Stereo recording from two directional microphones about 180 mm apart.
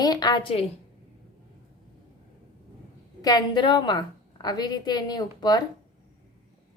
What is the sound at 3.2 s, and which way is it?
A woman's voice, 25° left (ahead or behind).